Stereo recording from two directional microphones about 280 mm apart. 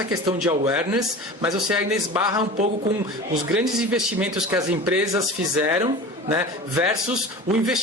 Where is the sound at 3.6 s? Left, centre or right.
Centre.